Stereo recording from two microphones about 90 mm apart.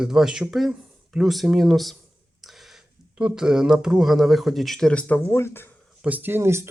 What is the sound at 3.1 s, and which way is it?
Speech, 10° right (ahead or behind).